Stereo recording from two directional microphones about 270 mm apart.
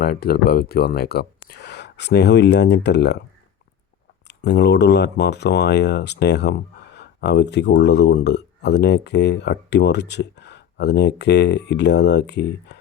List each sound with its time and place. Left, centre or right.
0.0 s speech: left
4.3 s speech: left